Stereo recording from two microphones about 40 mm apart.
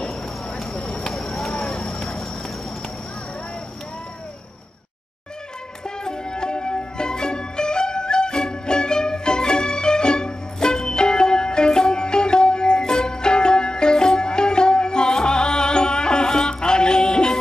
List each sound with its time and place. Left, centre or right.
0.7 s a sound: left
1.1 s clip-clop: centre
1.5 s clip-clop: left
5.9 s music: centre